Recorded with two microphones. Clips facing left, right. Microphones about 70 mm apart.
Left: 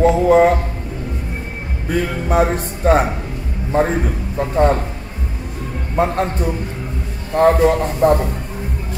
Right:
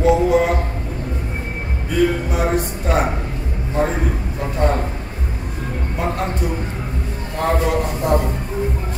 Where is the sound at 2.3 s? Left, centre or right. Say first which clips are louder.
Left 3 dB; left.